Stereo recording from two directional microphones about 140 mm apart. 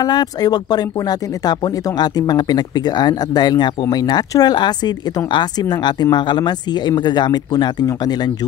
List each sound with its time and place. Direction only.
0.0 s speech: 30° left (ahead or behind)